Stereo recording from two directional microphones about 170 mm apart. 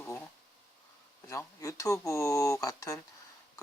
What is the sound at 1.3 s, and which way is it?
Speech, 15° left (ahead or behind).